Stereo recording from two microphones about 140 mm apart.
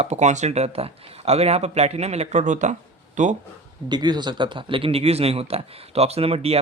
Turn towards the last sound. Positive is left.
turn(degrees=-45)  # may be behind; listen again after turning